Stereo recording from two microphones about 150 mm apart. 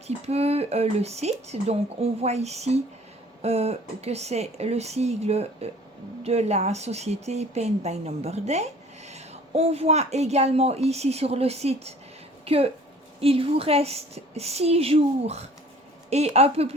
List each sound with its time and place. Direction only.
0.3 s a woman's voice: 45° right (ahead or behind)